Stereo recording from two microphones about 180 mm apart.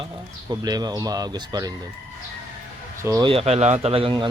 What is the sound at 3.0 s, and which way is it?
Speech, 20° right (ahead or behind).